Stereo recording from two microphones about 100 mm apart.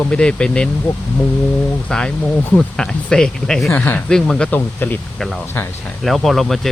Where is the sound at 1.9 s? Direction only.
5° left (ahead or behind).